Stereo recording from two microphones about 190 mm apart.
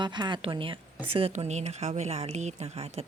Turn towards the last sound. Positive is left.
turn(degrees=-35)  # may be behind; listen again after turning